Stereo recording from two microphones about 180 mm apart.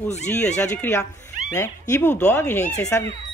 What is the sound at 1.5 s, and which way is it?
Speech, 15° left (ahead or behind).